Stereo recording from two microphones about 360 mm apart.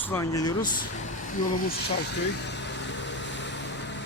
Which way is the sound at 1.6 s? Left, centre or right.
Left.